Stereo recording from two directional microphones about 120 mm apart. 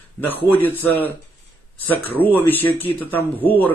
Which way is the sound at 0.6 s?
15° left (ahead or behind).